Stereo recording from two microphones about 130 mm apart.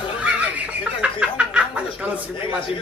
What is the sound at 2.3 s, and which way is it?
Speech, 40° left (ahead or behind).